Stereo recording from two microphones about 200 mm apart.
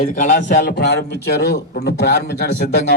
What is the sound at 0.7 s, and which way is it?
A man's voice, 55° left (ahead or behind).